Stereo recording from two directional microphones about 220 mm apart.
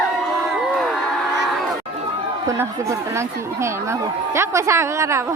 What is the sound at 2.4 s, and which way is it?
Speech, 15° right (ahead or behind).